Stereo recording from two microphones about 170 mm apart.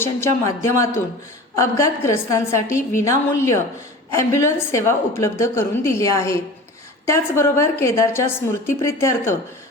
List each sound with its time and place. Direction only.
0.0 s a woman's voice: 15° left (ahead or behind)